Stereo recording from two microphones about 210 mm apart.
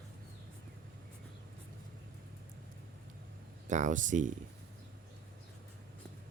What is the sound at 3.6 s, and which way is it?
Speech, 35° right (ahead or behind).